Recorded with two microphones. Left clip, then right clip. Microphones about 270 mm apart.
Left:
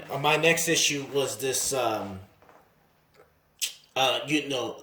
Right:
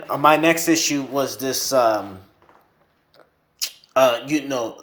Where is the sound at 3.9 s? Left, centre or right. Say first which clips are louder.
Right 8 dB; right.